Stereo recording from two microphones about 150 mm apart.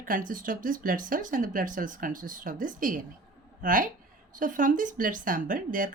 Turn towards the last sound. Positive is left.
turn(degrees=-65)  # may be behind; listen again after turning